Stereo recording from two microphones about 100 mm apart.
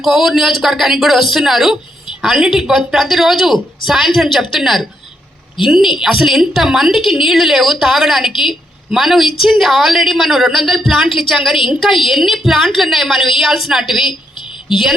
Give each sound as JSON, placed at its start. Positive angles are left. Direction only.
{"t": 0.0, "sound": "speech", "side_deg": 0}
{"t": 8.3, "sound": "a woman's voice", "side_deg": 55}
{"t": 8.9, "sound": "speech", "side_deg": 0}